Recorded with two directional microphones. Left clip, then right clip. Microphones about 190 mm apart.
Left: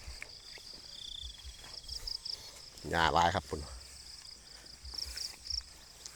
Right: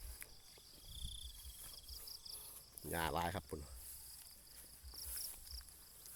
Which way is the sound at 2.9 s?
10° right (ahead or behind).